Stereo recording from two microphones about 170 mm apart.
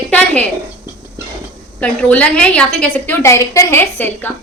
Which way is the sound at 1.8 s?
5° left (ahead or behind).